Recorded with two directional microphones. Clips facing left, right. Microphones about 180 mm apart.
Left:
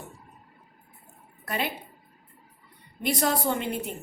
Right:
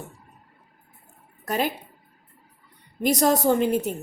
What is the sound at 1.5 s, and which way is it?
Speech, 40° right (ahead or behind).